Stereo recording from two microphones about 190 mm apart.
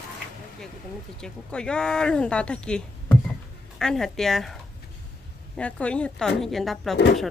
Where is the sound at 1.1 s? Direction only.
5° left (ahead or behind).